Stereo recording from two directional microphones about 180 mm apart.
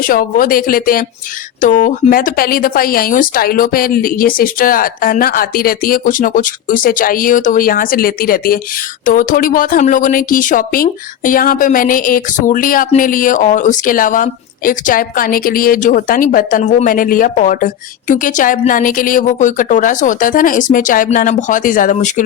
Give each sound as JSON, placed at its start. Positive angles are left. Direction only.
{"t": 0.0, "sound": "speech", "side_deg": 50}